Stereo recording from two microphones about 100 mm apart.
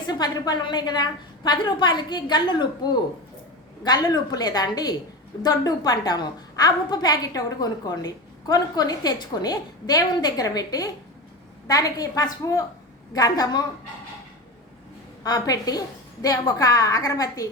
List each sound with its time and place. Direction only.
0.1 s a woman's voice: 45° left (ahead or behind)
15.2 s a woman's voice: 40° left (ahead or behind)